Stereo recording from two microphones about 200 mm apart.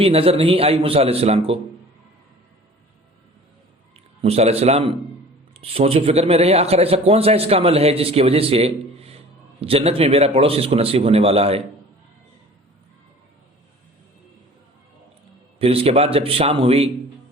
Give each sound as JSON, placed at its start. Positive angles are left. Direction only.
{"t": 0.0, "sound": "speech", "side_deg": -30}
{"t": 4.2, "sound": "a man's voice", "side_deg": -30}
{"t": 15.5, "sound": "speech", "side_deg": -30}